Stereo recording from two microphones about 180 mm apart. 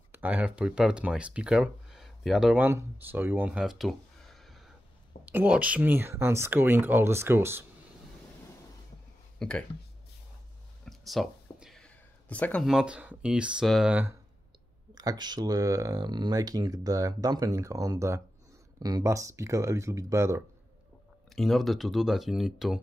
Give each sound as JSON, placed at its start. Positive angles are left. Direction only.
{"t": 0.1, "sound": "speech", "side_deg": -10}
{"t": 9.4, "sound": "speech", "side_deg": 5}
{"t": 10.9, "sound": "speech", "side_deg": 0}
{"t": 15.0, "sound": "speech", "side_deg": -20}
{"t": 21.3, "sound": "speech", "side_deg": 0}